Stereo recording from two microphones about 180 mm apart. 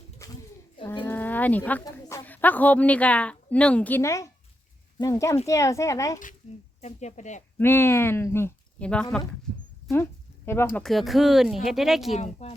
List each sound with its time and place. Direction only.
1.0 s bird: 10° left (ahead or behind)
1.8 s a woman's voice: 15° left (ahead or behind)
6.8 s speech: 40° left (ahead or behind)
7.6 s speech: 15° left (ahead or behind)
9.9 s a sound: 15° left (ahead or behind)
10.8 s speech: centre (ahead or behind)
12.1 s speech: 35° left (ahead or behind)